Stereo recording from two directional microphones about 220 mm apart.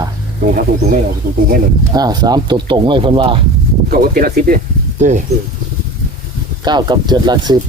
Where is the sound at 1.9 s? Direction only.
20° right (ahead or behind).